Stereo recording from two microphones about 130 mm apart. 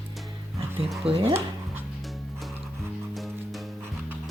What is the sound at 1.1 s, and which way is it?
Speech, 45° right (ahead or behind).